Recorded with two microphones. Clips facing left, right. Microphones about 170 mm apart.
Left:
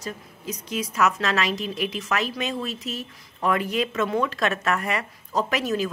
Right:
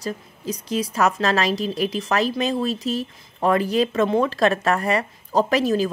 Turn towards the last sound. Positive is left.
turn(degrees=-35)  # may be behind; listen again after turning